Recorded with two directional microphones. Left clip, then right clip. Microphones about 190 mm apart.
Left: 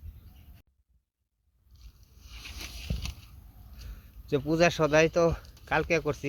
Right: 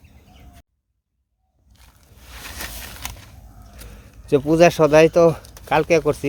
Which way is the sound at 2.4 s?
25° right (ahead or behind).